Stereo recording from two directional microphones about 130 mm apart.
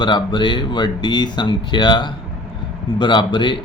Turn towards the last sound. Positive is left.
turn(degrees=35)  # may be behind; listen again after turning